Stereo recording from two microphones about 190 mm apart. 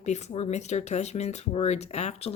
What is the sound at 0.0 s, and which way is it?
Speech, 35° left (ahead or behind).